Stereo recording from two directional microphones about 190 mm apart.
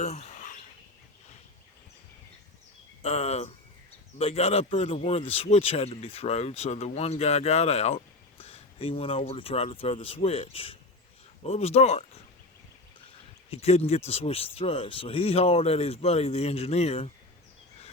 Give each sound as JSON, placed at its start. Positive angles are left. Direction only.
{"t": 0.0, "sound": "a sound", "side_deg": 35}
{"t": 3.0, "sound": "speech", "side_deg": 30}
{"t": 13.5, "sound": "speech", "side_deg": 35}